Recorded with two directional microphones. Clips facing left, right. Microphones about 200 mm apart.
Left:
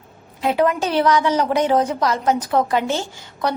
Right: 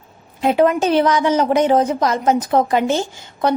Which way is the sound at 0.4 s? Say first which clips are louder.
Right 4 dB; 25° right (ahead or behind).